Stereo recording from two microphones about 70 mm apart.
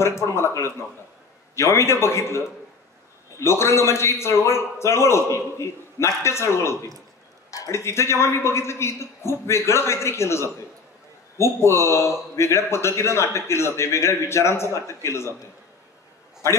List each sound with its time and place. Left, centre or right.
0.0 s speech: left
7.5 s a sound: left
7.8 s speech: left
16.4 s speech: left